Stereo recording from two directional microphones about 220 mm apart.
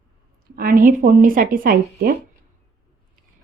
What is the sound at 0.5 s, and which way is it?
A woman's voice, 40° right (ahead or behind).